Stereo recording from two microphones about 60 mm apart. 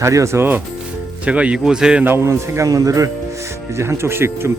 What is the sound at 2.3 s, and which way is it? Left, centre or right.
Speech, right.